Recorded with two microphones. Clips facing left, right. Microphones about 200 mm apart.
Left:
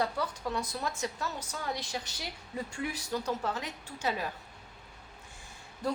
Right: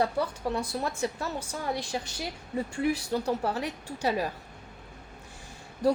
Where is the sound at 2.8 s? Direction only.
30° right (ahead or behind).